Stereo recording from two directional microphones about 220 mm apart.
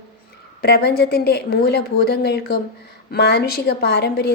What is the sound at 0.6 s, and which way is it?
A woman's voice, 45° left (ahead or behind).